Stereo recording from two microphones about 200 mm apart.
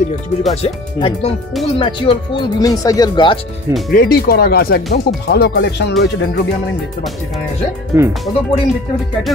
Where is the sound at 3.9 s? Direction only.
50° left (ahead or behind).